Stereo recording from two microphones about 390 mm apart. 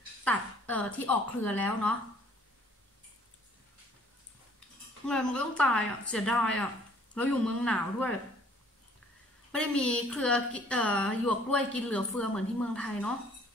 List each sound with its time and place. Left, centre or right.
0.2 s a woman's voice: centre
5.0 s a woman's voice: centre
9.5 s a woman's voice: centre